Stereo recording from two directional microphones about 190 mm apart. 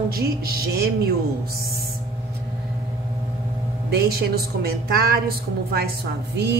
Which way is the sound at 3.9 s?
55° right (ahead or behind).